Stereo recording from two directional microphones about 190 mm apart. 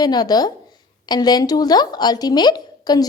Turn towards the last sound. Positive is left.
turn(degrees=20)  # may be behind; listen again after turning